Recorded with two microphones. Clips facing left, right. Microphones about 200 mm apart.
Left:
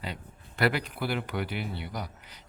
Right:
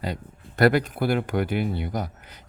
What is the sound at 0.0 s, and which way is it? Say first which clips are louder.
Speech: right 7 dB; 45° right (ahead or behind).